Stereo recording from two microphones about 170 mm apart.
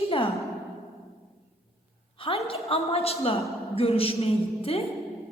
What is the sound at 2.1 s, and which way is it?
A woman's voice, 35° left (ahead or behind).